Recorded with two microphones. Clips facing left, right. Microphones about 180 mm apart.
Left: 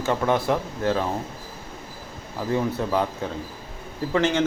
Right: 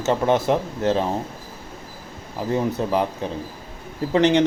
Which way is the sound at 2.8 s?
20° right (ahead or behind).